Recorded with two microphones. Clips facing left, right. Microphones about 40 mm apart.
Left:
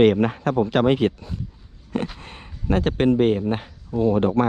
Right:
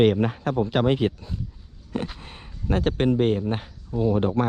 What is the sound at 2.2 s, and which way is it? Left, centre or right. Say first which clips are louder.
Speech: left 1 dB; left.